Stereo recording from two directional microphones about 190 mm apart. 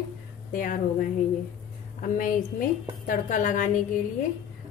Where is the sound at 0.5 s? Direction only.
45° left (ahead or behind).